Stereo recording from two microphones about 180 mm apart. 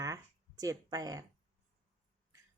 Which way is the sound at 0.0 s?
20° right (ahead or behind).